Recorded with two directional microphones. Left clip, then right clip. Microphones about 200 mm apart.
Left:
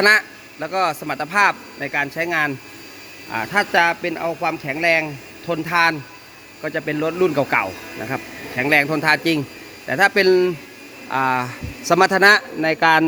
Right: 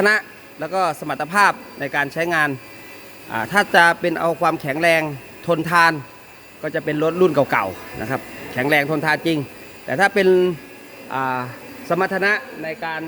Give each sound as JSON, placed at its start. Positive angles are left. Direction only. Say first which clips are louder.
{"t": 0.0, "sound": "a man's voice", "louder": "left 3 dB", "side_deg": -10}
{"t": 11.1, "sound": "speech", "louder": "left 3 dB", "side_deg": 5}
{"t": 11.9, "sound": "a man's voice", "louder": "left 6 dB", "side_deg": 20}
{"t": 12.6, "sound": "a man's voice", "louder": "left 11 dB", "side_deg": 60}